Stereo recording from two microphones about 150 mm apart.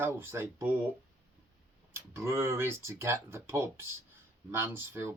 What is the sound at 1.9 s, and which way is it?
Speech, 15° right (ahead or behind).